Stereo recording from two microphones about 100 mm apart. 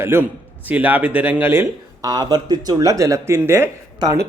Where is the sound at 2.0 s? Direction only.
40° right (ahead or behind).